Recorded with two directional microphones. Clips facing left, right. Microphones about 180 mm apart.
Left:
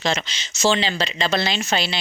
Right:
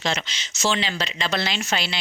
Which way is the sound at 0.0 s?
35° left (ahead or behind).